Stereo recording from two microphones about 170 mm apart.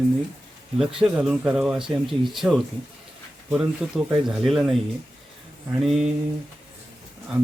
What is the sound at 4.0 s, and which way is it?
Speech, 5° right (ahead or behind).